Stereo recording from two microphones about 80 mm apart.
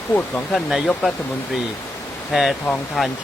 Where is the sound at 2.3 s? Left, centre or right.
Centre.